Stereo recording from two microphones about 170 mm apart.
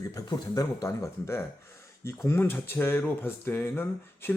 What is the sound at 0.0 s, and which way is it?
A man's voice, 20° left (ahead or behind).